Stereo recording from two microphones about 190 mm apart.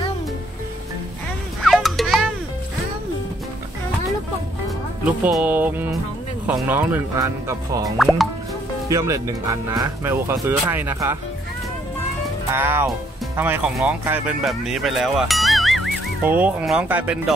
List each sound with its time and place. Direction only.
1.6 s music: centre (ahead or behind)
5.0 s speech: 10° right (ahead or behind)
8.0 s speech: centre (ahead or behind)
8.8 s speech: 15° right (ahead or behind)
12.5 s speech: 10° right (ahead or behind)